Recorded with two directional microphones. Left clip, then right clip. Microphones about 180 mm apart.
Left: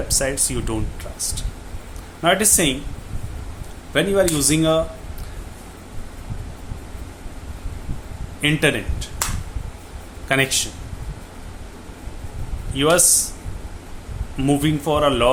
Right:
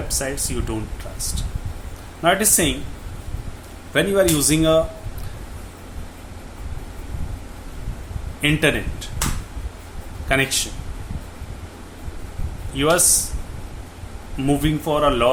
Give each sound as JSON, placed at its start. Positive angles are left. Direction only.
{"t": 0.1, "sound": "speech", "side_deg": 20}
{"t": 3.9, "sound": "speech", "side_deg": 0}
{"t": 8.4, "sound": "speech", "side_deg": 5}
{"t": 10.2, "sound": "speech", "side_deg": 15}
{"t": 12.7, "sound": "speech", "side_deg": 10}
{"t": 14.4, "sound": "speech", "side_deg": 15}